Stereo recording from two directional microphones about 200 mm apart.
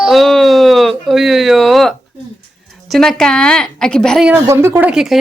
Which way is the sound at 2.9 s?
Centre (ahead or behind).